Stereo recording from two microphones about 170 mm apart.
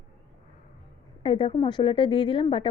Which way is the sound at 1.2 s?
30° left (ahead or behind).